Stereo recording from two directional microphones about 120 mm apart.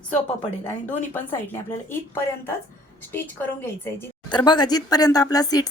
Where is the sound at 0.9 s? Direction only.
20° left (ahead or behind).